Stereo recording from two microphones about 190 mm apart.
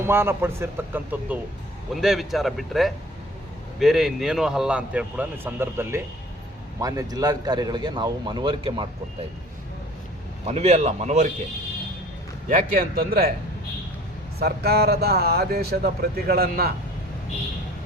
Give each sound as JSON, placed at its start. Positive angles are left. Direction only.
{"t": 0.0, "sound": "a man's voice", "side_deg": -10}
{"t": 10.4, "sound": "speech", "side_deg": -35}
{"t": 12.5, "sound": "speech", "side_deg": -45}
{"t": 14.3, "sound": "speech", "side_deg": -55}